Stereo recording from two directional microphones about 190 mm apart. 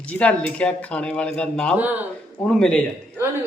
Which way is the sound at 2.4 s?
5° left (ahead or behind).